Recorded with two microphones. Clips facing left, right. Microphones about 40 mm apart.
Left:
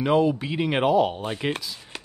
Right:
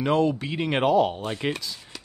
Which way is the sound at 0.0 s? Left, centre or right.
Centre.